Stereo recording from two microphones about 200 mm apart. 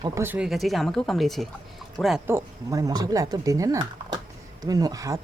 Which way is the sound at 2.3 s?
15° right (ahead or behind).